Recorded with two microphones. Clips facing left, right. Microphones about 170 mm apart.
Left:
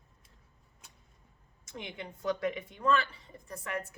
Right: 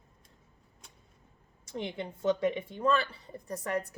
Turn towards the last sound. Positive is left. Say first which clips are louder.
# right 5 dB
turn(degrees=-35)  # may be behind; listen again after turning